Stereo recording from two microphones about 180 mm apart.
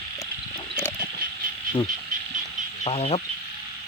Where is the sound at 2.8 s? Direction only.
35° left (ahead or behind).